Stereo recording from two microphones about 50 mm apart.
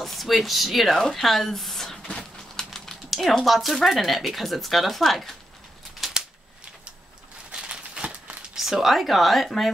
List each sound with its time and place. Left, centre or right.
0.0 s speech: centre
5.9 s scissors: centre
7.5 s a sound: centre
8.5 s speech: centre